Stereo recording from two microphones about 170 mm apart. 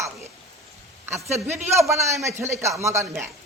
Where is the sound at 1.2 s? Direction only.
15° right (ahead or behind).